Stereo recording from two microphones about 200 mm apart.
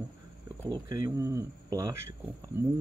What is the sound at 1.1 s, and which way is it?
Speech, 15° right (ahead or behind).